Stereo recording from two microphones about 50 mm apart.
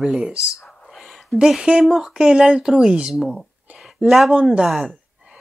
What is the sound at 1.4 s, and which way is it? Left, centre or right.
Speech, centre.